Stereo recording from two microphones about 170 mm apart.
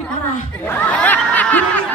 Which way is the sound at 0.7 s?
10° left (ahead or behind).